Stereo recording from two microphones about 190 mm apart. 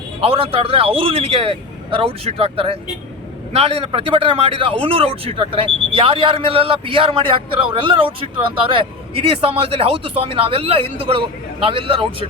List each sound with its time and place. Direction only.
0.2 s a man's voice: 30° right (ahead or behind)